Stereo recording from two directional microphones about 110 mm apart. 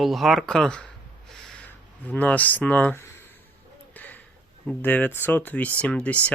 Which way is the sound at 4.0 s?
15° left (ahead or behind).